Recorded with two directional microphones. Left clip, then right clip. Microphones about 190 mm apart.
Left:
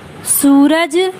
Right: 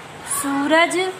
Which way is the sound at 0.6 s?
40° left (ahead or behind).